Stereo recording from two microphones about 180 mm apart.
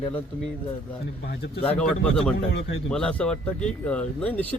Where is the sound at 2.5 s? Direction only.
80° left.